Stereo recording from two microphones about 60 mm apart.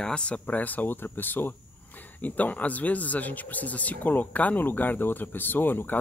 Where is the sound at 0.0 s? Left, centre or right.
Centre.